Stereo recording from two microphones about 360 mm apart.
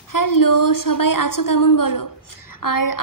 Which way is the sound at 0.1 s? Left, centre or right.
Left.